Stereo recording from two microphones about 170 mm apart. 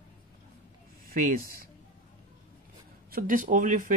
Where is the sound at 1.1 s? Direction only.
55° right (ahead or behind).